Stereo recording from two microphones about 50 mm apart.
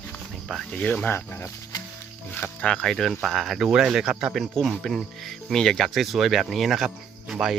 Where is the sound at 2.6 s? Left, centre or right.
Centre.